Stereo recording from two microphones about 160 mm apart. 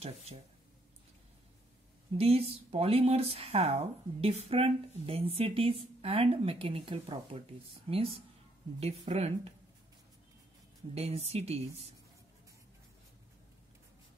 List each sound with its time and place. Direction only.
0.0 s speech: 40° right (ahead or behind)
2.1 s speech: 40° right (ahead or behind)
11.0 s speech: 40° right (ahead or behind)